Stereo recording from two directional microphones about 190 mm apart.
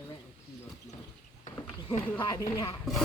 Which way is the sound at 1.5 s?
40° left (ahead or behind).